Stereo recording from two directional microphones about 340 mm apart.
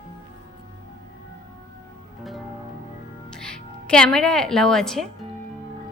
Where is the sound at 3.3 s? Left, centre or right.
Centre.